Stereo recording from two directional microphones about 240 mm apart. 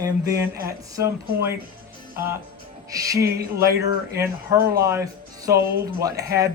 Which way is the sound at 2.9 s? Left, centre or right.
Centre.